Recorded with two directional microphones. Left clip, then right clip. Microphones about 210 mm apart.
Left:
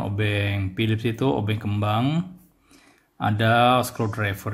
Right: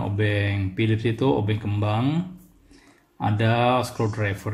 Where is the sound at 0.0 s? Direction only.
20° left (ahead or behind).